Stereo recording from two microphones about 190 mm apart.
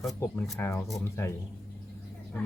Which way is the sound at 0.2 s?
10° left (ahead or behind).